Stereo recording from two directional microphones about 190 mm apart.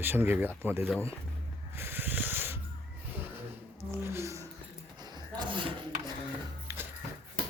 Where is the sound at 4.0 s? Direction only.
15° right (ahead or behind).